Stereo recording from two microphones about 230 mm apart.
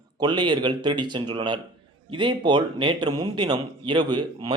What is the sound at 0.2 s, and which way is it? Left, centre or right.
A man's voice, centre.